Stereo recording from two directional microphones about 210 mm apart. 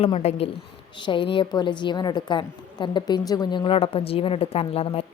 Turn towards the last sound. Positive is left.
turn(degrees=30)  # may be behind; listen again after turning